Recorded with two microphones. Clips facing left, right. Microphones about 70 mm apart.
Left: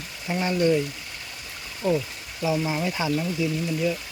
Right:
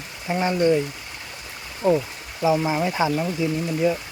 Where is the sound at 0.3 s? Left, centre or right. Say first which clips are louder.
Right 2 dB; centre.